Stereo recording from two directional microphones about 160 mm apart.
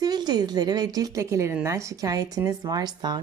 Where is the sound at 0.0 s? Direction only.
25° right (ahead or behind).